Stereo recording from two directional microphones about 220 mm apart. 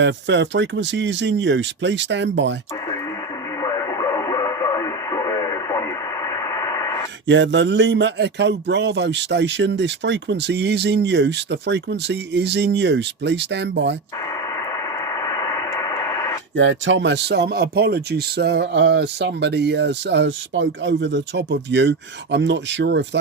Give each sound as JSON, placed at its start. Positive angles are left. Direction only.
{"t": 0.0, "sound": "speech", "side_deg": -55}
{"t": 3.6, "sound": "radio", "side_deg": 15}
{"t": 7.3, "sound": "speech", "side_deg": -55}
{"t": 14.4, "sound": "radio", "side_deg": 15}
{"t": 16.6, "sound": "speech", "side_deg": -55}